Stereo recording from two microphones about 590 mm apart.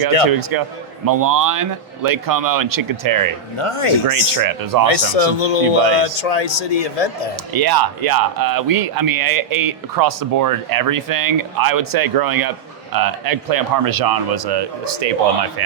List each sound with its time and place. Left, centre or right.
0.3 s speech: right
3.6 s speech: left
4.1 s speech: right
4.9 s a man's voice: left
7.5 s a man's voice: right